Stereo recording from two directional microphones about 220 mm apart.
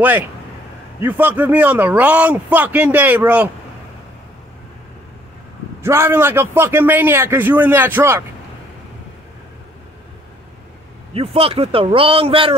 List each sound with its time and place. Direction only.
1.0 s a man's voice: 10° right (ahead or behind)
5.8 s a man's voice: 10° right (ahead or behind)
11.1 s a man's voice: 25° right (ahead or behind)